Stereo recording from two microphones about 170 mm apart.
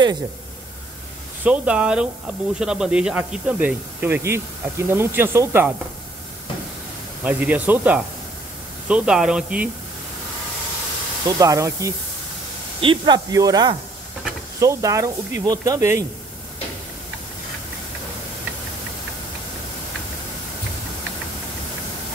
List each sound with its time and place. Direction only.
1.4 s speech: 5° right (ahead or behind)
7.2 s speech: 10° right (ahead or behind)
11.2 s speech: 20° right (ahead or behind)